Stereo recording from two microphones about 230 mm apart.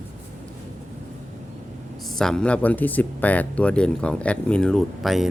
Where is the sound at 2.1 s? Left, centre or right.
Centre.